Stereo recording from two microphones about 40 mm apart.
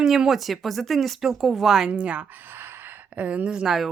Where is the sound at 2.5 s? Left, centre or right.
Right.